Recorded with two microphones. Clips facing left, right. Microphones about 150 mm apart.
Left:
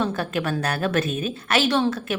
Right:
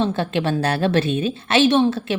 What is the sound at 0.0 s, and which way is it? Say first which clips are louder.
A woman's voice: right 4 dB; 25° right (ahead or behind).